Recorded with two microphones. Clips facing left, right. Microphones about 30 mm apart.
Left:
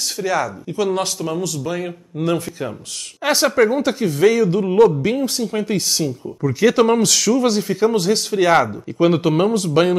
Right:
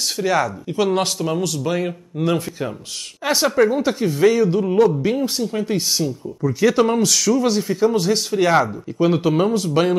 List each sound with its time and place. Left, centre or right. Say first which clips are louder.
0.0 s speech: right 1 dB; centre
3.3 s speech: left 1 dB; centre